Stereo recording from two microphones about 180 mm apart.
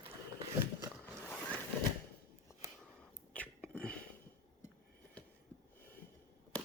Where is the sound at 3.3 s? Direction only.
5° left (ahead or behind).